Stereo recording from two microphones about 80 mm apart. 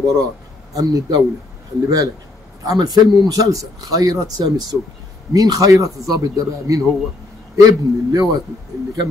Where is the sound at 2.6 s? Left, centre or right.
Right.